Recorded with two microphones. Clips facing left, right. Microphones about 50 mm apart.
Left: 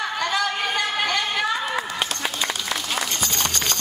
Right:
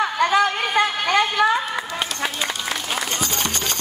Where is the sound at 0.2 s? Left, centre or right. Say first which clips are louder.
Right 6 dB; right.